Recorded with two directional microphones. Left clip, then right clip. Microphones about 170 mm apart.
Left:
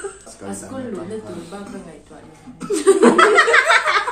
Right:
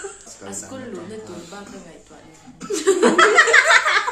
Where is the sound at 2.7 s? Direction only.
Centre (ahead or behind).